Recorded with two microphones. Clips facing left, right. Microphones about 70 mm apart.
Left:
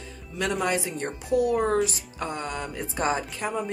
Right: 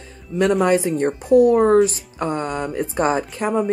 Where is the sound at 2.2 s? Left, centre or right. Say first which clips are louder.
Right 8 dB; right.